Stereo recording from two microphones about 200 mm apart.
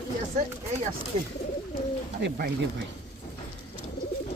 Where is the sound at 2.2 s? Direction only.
50° right (ahead or behind).